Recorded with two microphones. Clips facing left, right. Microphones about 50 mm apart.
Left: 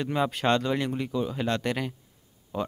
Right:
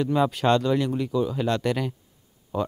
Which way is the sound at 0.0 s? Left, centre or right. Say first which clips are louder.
Right 4 dB; centre.